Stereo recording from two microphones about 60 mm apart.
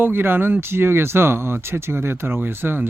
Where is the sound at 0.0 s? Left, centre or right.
Right.